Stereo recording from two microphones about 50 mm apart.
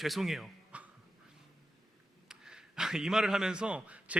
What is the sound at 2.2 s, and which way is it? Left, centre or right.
A man's voice, centre.